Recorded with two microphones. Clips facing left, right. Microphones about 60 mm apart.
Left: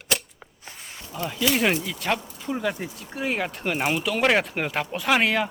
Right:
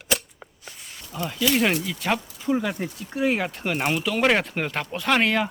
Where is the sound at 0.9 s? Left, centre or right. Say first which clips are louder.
Right 1 dB; centre.